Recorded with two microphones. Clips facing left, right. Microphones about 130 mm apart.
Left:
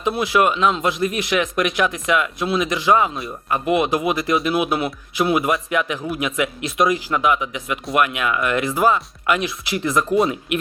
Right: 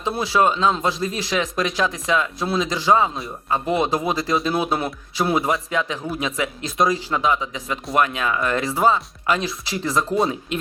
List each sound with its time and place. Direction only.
0.0 s speech: 30° right (ahead or behind)